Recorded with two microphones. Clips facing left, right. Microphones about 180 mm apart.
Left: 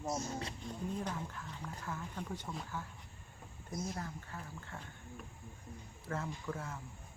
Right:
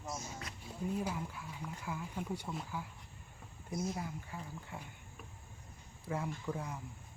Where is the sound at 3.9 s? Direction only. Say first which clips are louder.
Right 2 dB; 10° right (ahead or behind).